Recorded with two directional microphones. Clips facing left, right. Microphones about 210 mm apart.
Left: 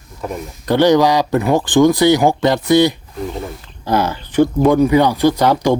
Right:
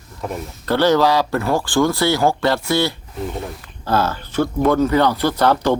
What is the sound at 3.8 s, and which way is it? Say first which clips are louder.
Speech: left 2 dB; 15° left (ahead or behind).